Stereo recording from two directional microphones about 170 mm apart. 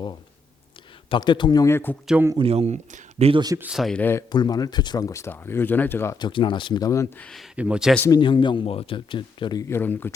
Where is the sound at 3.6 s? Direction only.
5° right (ahead or behind); by 4.2 s 10° left (ahead or behind).